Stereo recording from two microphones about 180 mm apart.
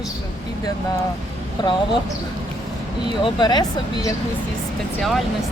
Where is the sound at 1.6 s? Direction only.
25° left (ahead or behind).